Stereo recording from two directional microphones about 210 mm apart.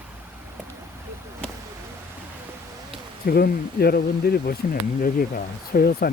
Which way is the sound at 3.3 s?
45° left (ahead or behind).